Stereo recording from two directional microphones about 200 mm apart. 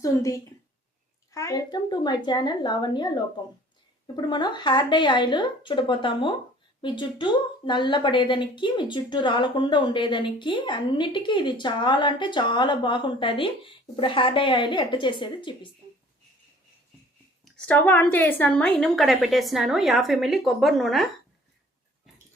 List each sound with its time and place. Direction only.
0.0 s a woman's voice: 15° left (ahead or behind)
17.4 s a woman's voice: 5° left (ahead or behind)